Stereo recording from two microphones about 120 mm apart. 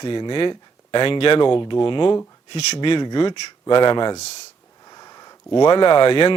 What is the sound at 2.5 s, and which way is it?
Speech, 65° left (ahead or behind).